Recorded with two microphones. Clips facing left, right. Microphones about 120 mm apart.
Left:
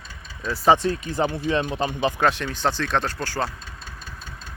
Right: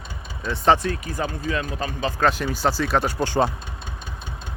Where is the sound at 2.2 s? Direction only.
Centre (ahead or behind); by 3.5 s 20° right (ahead or behind).